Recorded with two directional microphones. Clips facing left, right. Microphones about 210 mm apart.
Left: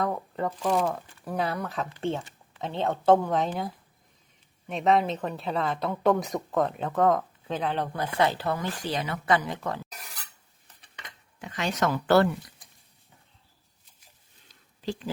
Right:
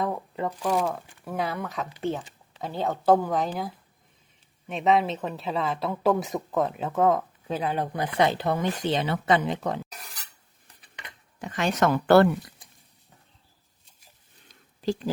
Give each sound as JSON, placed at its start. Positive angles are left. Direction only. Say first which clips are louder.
{"t": 0.0, "sound": "speech", "louder": "even", "side_deg": 0}
{"t": 4.7, "sound": "speech", "louder": "right 1 dB", "side_deg": 0}
{"t": 11.3, "sound": "speech", "louder": "right 4 dB", "side_deg": -45}
{"t": 14.8, "sound": "a woman's voice", "louder": "right 5 dB", "side_deg": -40}